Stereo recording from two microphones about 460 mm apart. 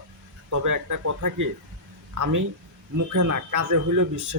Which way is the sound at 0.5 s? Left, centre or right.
Right.